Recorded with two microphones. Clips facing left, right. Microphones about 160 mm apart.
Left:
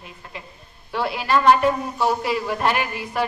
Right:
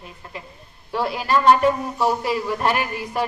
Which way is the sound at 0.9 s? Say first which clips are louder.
Even; 40° right (ahead or behind).